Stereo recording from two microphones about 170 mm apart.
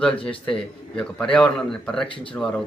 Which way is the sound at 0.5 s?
5° left (ahead or behind).